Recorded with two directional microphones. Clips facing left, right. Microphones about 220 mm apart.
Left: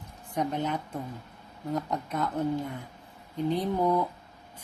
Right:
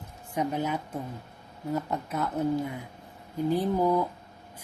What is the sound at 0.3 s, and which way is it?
Speech, 5° right (ahead or behind).